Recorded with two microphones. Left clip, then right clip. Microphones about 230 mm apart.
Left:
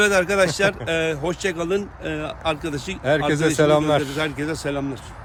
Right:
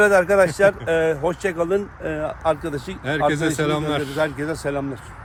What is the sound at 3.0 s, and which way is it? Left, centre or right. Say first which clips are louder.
A man's voice: left 1 dB; centre.